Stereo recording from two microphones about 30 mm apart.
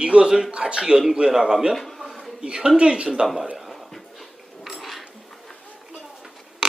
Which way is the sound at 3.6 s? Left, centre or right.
Centre.